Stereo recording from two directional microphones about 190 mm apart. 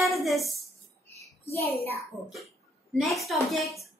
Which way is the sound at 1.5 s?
15° left (ahead or behind).